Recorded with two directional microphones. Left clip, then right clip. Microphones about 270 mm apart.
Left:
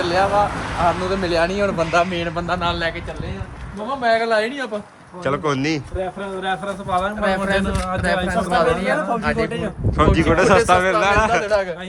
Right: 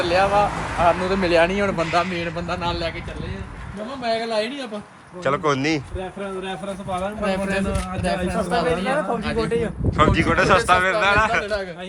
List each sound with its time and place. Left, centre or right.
0.1 s speech: centre
1.8 s a man's voice: centre
4.0 s a man's voice: centre
6.9 s a man's voice: centre